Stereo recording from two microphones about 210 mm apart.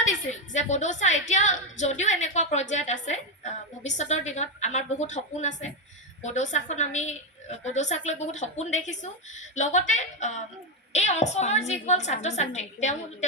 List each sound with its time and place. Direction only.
0.0 s a woman's voice: 35° left (ahead or behind)